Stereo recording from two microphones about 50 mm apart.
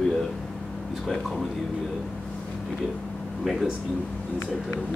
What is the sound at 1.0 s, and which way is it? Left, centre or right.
Speech, centre.